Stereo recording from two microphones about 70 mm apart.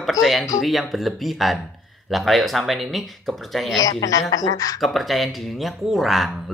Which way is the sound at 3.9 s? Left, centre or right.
Left.